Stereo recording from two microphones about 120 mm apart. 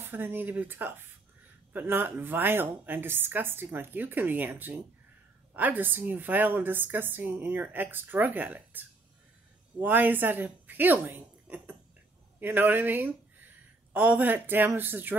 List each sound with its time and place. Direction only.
0.0 s a woman's voice: 15° right (ahead or behind)